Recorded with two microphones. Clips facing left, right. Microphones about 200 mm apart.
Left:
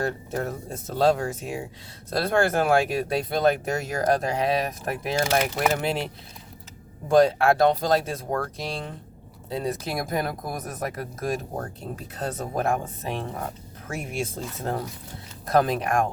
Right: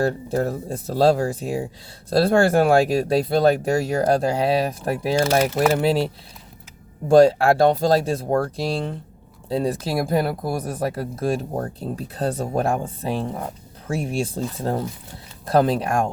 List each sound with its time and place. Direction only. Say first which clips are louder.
0.0 s speech: right 6 dB; 30° right (ahead or behind)
7.1 s speech: right 5 dB; 30° right (ahead or behind)